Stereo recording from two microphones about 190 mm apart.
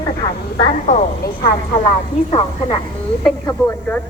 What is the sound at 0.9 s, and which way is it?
Speech, 40° left (ahead or behind).